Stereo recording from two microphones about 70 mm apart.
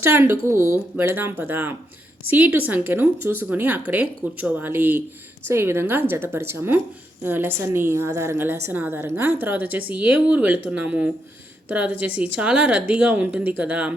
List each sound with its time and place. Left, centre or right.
0.0 s a woman's voice: right